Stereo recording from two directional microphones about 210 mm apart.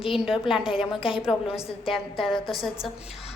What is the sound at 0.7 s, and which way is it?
Speech, 25° left (ahead or behind).